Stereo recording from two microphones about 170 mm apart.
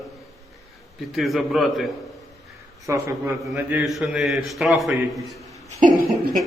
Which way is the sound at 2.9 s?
15° right (ahead or behind).